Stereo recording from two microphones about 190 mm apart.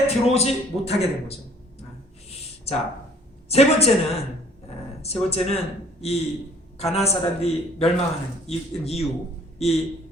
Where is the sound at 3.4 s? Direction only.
35° left (ahead or behind).